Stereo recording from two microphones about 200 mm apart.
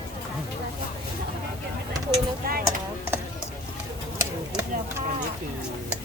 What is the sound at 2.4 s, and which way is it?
Speech, 45° right (ahead or behind).